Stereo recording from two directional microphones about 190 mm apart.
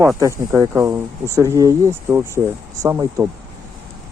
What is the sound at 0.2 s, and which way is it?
Speech, 15° right (ahead or behind).